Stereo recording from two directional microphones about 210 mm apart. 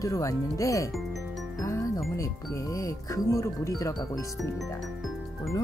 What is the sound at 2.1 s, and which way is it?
Speech, 15° left (ahead or behind).